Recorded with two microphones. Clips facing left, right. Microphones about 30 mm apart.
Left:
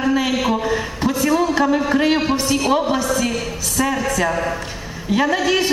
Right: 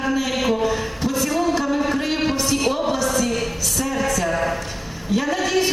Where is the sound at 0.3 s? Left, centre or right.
Centre.